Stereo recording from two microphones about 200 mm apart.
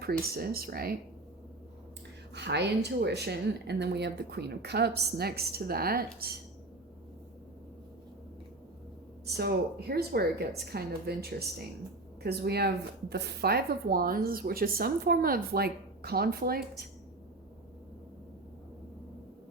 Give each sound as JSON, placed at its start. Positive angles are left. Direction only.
{"t": 0.0, "sound": "speech", "side_deg": -50}
{"t": 2.3, "sound": "speech", "side_deg": -60}
{"t": 9.3, "sound": "speech", "side_deg": -55}